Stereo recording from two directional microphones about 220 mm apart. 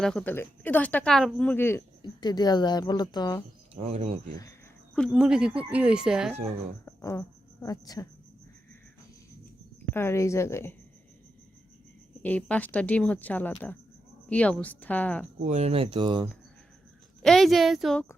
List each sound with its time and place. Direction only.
0.0 s speech: 5° left (ahead or behind)
3.8 s speech: 25° right (ahead or behind)
4.9 s speech: centre (ahead or behind)
6.8 s speech: 15° left (ahead or behind)
9.9 s speech: 10° left (ahead or behind)
12.2 s speech: 5° left (ahead or behind)
15.4 s speech: 30° right (ahead or behind)
17.2 s speech: centre (ahead or behind)